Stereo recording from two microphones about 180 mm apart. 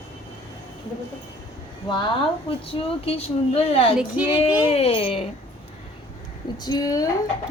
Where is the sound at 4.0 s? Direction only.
5° right (ahead or behind).